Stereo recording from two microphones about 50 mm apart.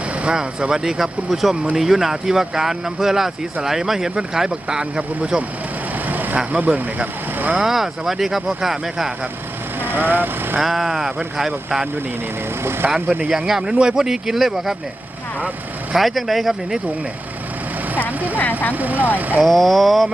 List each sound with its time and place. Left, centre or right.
0.3 s speech: centre
6.1 s vehicle: right
6.3 s speech: right
7.6 s speech: centre
9.8 s speech: right
10.6 s speech: centre
13.1 s speech: right
13.3 s speech: centre
16.0 s speech: centre
18.3 s speech: left
18.7 s speech: right
19.5 s speech: centre